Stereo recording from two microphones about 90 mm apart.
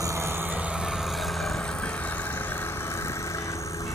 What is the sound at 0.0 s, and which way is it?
Vehicle, 30° right (ahead or behind).